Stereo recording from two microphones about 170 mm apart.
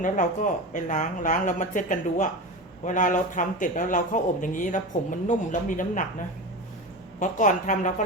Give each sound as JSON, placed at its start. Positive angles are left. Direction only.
{"t": 0.0, "sound": "speech", "side_deg": 50}